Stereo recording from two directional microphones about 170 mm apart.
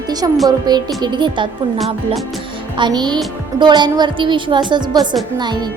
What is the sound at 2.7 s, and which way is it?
Speech, 25° right (ahead or behind).